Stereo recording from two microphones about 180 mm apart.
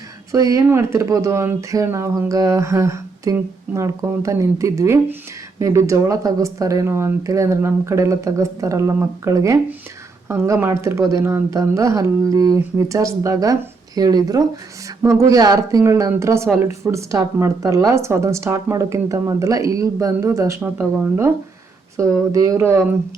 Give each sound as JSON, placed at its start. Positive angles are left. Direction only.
{"t": 0.3, "sound": "speech", "side_deg": -20}